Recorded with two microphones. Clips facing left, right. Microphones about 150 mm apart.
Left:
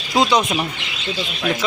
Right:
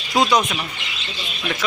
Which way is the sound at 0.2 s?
25° left (ahead or behind).